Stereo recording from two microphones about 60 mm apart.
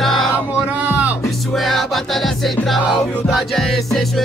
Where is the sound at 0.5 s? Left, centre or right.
Right.